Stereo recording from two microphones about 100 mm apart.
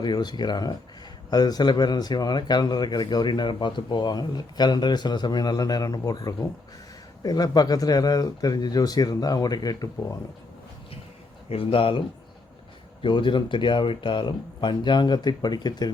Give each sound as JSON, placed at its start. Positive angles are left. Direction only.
{"t": 0.0, "sound": "speech", "side_deg": 45}
{"t": 11.4, "sound": "speech", "side_deg": 70}